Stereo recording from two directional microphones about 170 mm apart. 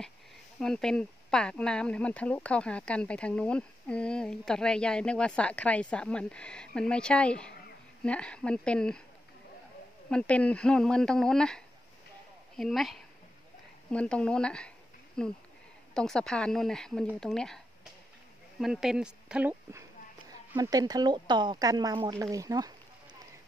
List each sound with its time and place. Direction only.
0.6 s speech: 5° left (ahead or behind)
10.0 s speech: 5° left (ahead or behind)
18.6 s speech: centre (ahead or behind)
20.2 s speech: 20° right (ahead or behind)